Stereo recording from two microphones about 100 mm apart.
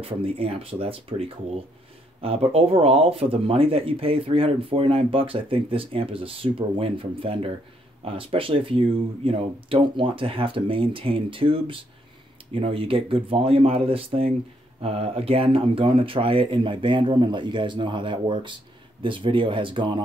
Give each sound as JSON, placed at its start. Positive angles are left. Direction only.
{"t": 0.0, "sound": "speech", "side_deg": -70}
{"t": 14.8, "sound": "speech", "side_deg": -85}